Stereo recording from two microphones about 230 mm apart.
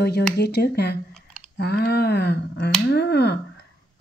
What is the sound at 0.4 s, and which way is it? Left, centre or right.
Speech, left.